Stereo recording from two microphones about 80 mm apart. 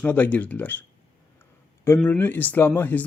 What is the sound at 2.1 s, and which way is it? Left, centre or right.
Speech, left.